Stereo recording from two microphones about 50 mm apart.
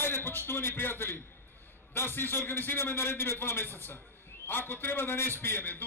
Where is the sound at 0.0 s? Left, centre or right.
Left.